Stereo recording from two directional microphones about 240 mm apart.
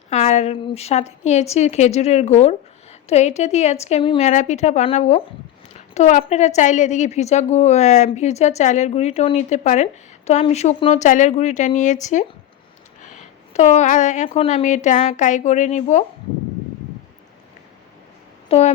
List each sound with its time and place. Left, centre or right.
0.1 s a woman's voice: left
13.0 s a woman's voice: left
18.4 s a sound: left